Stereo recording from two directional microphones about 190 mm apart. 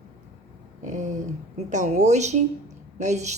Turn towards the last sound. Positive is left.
turn(degrees=-40)  # may be behind; listen again after turning